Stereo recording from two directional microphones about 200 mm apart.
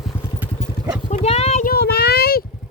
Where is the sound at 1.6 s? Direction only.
50° left (ahead or behind).